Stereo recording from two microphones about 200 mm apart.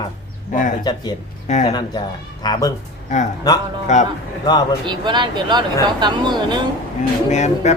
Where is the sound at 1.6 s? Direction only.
20° left (ahead or behind).